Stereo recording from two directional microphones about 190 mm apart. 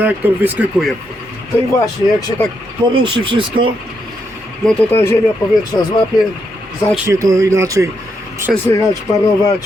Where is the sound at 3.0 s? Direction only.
25° right (ahead or behind).